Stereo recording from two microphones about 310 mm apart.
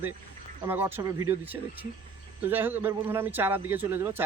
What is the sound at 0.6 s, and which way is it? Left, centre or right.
A man's voice, centre.